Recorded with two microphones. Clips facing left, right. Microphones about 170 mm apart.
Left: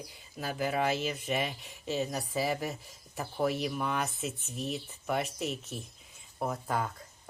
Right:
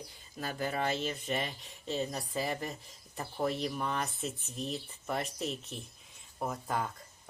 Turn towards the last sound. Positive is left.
turn(degrees=0)  # may be behind; listen again after turning